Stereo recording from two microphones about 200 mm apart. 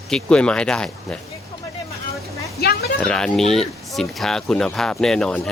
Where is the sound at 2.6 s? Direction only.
50° left (ahead or behind).